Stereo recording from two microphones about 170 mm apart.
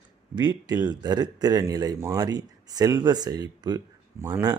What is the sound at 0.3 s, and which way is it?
Speech, 25° right (ahead or behind).